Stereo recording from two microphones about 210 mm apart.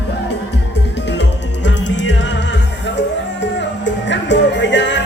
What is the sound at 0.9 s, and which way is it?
Music, 55° left (ahead or behind).